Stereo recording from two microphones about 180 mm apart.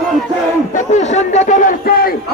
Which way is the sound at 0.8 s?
40° left (ahead or behind).